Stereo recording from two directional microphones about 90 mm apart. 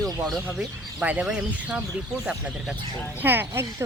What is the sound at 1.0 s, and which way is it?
Speech, 10° right (ahead or behind).